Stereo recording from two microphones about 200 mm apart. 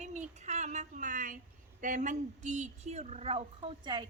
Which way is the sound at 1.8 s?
40° right (ahead or behind).